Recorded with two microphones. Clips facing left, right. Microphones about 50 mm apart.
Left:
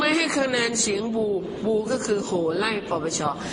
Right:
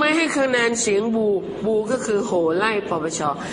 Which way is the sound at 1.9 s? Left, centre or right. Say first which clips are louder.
Right 3 dB; centre.